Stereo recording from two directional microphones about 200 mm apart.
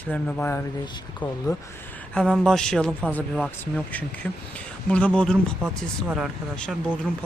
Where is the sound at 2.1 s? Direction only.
5° left (ahead or behind).